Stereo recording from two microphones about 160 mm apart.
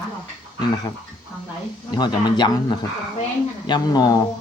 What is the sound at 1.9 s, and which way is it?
Speech, 25° left (ahead or behind).